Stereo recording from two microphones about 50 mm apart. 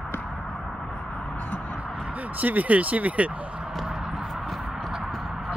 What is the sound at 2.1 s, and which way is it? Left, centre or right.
Speech, right.